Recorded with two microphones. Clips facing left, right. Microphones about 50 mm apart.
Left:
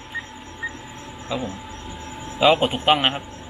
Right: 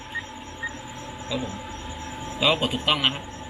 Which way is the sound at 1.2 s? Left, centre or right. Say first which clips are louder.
Left 3 dB; left.